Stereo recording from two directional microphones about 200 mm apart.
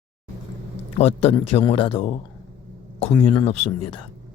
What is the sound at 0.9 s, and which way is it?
A man's voice, 30° left (ahead or behind).